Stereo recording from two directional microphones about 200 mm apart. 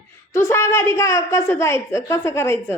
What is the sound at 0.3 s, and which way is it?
Speech, 15° left (ahead or behind).